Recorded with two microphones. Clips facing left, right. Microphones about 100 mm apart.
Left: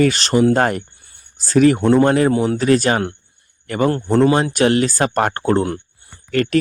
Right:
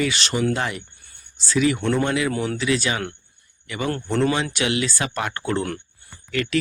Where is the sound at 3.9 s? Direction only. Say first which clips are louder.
Left 6 dB; 35° left (ahead or behind).